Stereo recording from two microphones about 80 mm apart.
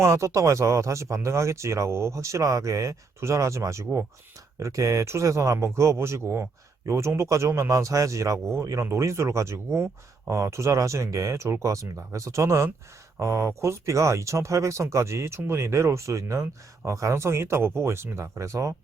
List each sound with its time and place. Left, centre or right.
0.0 s speech: right